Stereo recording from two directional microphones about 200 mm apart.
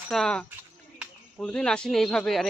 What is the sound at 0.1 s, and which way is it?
Speech, 5° left (ahead or behind).